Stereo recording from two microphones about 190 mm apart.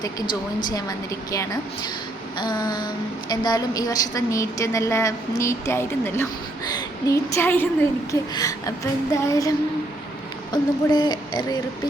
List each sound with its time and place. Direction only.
0.0 s a woman's voice: 20° left (ahead or behind)